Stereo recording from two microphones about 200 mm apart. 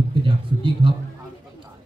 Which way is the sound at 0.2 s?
25° right (ahead or behind).